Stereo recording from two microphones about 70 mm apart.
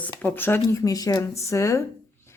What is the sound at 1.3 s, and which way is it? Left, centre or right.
Speech, left.